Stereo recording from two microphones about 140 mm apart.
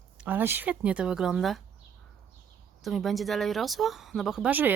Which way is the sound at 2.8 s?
Centre (ahead or behind).